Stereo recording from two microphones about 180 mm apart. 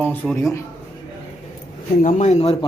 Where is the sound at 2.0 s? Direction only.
40° left (ahead or behind).